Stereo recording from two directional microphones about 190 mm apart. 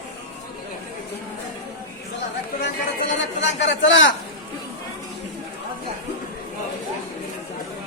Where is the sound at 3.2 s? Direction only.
75° left (ahead or behind).